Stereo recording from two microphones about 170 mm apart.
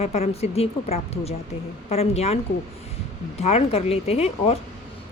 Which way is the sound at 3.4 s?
40° left (ahead or behind).